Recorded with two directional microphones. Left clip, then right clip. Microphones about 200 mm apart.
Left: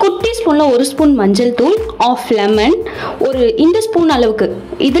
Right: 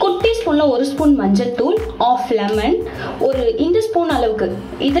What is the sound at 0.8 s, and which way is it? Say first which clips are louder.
Speech: left 4 dB; 50° left (ahead or behind).